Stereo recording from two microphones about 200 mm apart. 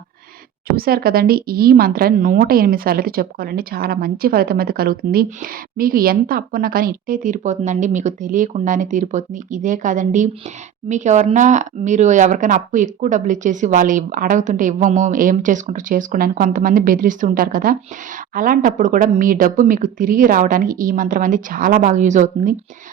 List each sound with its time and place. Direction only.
0.8 s a woman's voice: 50° right (ahead or behind)